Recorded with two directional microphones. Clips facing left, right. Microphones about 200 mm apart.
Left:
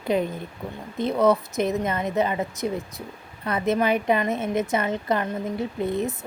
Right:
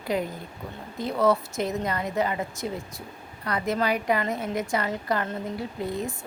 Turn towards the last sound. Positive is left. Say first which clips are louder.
# left 5 dB
turn(degrees=20)  # may be behind; listen again after turning